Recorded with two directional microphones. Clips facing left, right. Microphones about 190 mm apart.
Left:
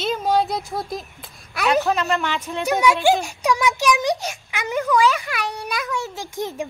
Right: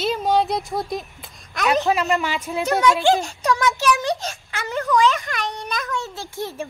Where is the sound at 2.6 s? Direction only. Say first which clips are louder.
Even; 10° left (ahead or behind).